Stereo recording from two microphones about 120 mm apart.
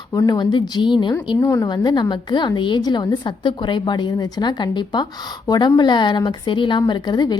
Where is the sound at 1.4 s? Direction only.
30° left (ahead or behind).